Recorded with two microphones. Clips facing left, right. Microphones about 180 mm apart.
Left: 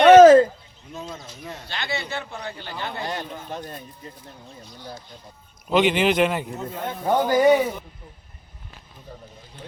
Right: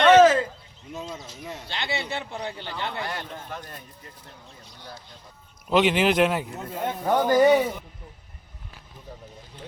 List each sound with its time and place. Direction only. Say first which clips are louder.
0.1 s a sound: left 7 dB; 40° left (ahead or behind)
1.6 s a man's voice: left 1 dB; 25° right (ahead or behind)
3.0 s speech: left 3 dB; 25° left (ahead or behind)
5.7 s speech: left 1 dB; centre (ahead or behind)
7.0 s speech: left 1 dB; 15° left (ahead or behind)